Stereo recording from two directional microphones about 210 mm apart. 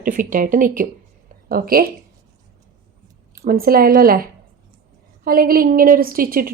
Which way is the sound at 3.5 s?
45° right (ahead or behind).